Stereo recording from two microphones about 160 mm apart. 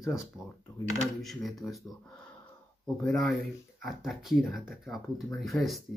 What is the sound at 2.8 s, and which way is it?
Speech, centre (ahead or behind).